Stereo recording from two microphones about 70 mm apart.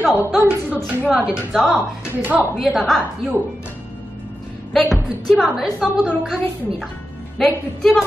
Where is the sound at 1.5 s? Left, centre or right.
Centre.